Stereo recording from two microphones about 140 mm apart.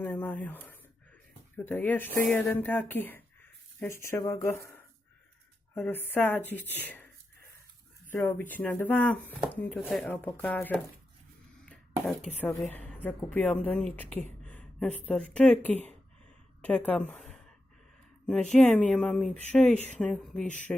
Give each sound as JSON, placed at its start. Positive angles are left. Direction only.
{"t": 0.0, "sound": "speech", "side_deg": 10}
{"t": 5.8, "sound": "speech", "side_deg": 15}
{"t": 8.1, "sound": "speech", "side_deg": 15}
{"t": 11.6, "sound": "a sound", "side_deg": 5}
{"t": 12.6, "sound": "speech", "side_deg": 10}
{"t": 17.2, "sound": "gasp", "side_deg": 0}
{"t": 18.3, "sound": "speech", "side_deg": 5}